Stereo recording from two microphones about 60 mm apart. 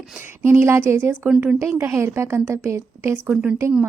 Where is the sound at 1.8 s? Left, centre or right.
Right.